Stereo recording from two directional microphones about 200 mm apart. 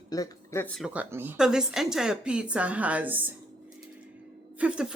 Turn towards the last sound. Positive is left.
turn(degrees=-5)  # may be behind; listen again after turning